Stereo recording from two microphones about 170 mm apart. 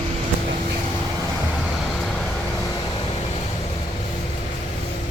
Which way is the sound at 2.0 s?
5° left (ahead or behind).